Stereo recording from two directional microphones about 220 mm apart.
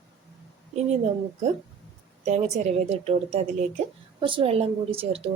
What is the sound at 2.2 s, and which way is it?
A woman's voice, 30° right (ahead or behind).